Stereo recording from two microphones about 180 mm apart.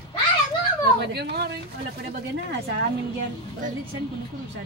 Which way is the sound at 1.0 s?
65° right (ahead or behind).